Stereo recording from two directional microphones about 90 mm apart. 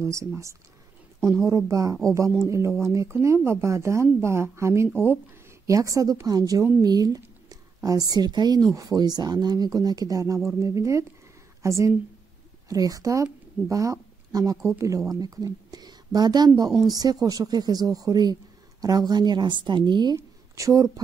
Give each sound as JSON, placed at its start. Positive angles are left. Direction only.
{"t": 0.0, "sound": "speech", "side_deg": -35}
{"t": 1.7, "sound": "a woman's voice", "side_deg": -40}
{"t": 20.2, "sound": "speech", "side_deg": -35}